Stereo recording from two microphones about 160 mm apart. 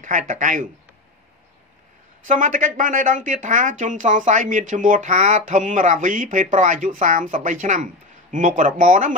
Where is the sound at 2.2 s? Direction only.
55° right (ahead or behind).